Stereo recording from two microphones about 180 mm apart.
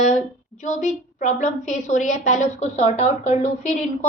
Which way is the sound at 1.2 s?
40° left (ahead or behind).